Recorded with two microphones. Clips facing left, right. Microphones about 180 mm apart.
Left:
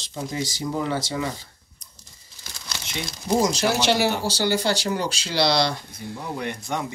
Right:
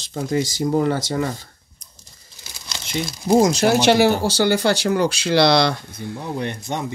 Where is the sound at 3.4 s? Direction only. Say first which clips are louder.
Right 5 dB; 50° right (ahead or behind).